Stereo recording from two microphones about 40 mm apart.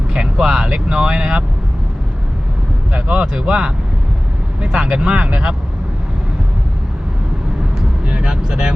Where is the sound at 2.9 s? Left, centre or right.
Right.